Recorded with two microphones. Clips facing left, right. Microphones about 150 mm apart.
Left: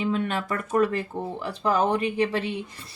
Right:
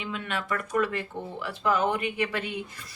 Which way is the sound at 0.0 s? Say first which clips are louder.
Left 7 dB; 35° left (ahead or behind).